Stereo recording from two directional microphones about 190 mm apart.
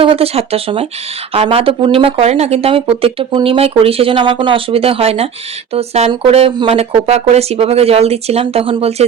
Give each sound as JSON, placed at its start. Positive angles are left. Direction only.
{"t": 0.0, "sound": "speech", "side_deg": -30}